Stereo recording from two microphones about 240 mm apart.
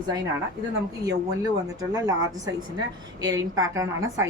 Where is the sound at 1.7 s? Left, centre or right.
Centre.